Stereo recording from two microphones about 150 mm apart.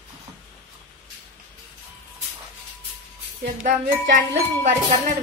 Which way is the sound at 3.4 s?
65° right (ahead or behind).